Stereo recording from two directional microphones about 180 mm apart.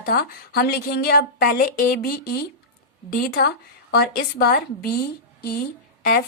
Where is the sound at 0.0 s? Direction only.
55° left (ahead or behind).